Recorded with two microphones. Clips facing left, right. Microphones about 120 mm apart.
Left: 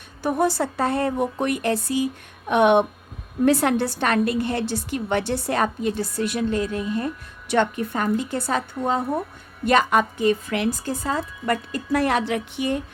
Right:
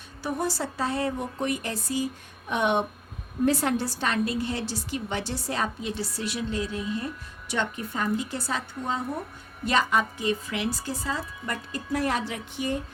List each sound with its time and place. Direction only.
0.2 s a woman's voice: 55° left (ahead or behind)
11.5 s a woman's voice: 75° left (ahead or behind)